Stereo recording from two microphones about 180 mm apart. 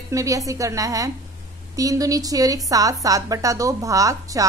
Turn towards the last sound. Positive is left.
turn(degrees=-20)  # may be behind; listen again after turning